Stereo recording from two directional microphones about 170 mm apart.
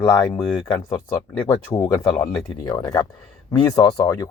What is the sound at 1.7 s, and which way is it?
Speech, 20° left (ahead or behind).